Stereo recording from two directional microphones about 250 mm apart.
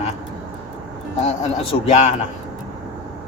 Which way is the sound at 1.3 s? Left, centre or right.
Left.